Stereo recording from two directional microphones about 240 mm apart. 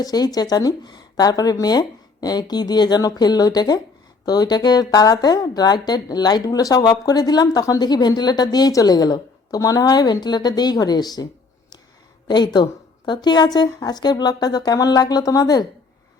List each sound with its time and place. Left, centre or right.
0.0 s a woman's voice: centre
12.3 s a woman's voice: centre